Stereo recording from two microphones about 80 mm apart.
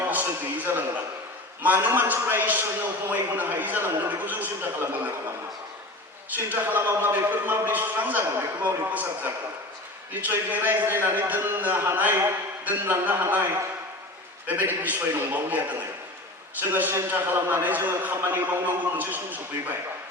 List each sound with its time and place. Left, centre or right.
0.1 s a man's voice: right
6.3 s a man's voice: right